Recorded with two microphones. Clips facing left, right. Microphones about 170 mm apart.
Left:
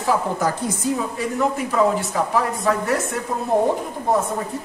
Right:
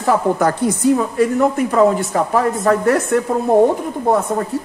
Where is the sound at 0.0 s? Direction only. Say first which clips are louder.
Right 5 dB; 60° right (ahead or behind).